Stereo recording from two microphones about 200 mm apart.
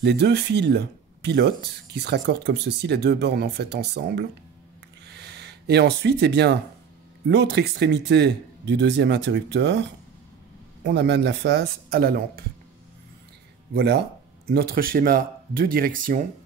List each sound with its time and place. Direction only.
0.0 s speech: 60° right (ahead or behind)
5.0 s a sound: 55° right (ahead or behind)
7.2 s speech: 60° right (ahead or behind)
13.7 s speech: 55° right (ahead or behind)